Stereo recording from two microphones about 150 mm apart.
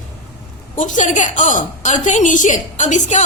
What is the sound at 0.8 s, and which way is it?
A woman's voice, 55° left (ahead or behind).